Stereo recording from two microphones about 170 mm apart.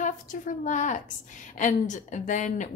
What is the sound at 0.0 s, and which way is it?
A woman's voice, 50° left (ahead or behind).